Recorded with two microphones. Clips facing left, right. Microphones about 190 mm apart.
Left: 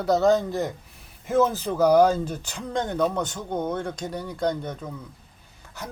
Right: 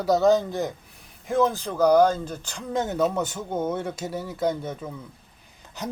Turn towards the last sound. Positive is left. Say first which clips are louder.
# right 5 dB
turn(degrees=-20)  # may be behind; listen again after turning